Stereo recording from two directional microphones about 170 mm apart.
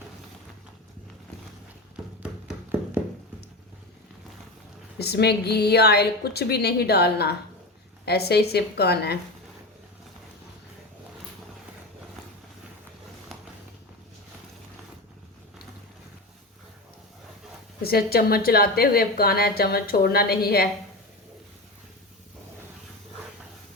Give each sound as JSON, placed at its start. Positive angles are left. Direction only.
{"t": 4.9, "sound": "a woman's voice", "side_deg": 70}
{"t": 17.8, "sound": "a woman's voice", "side_deg": 65}